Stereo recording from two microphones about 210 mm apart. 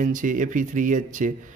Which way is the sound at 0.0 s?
40° right (ahead or behind).